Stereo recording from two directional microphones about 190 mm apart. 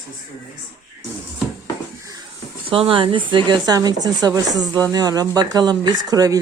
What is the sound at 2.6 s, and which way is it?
Speech, 30° right (ahead or behind).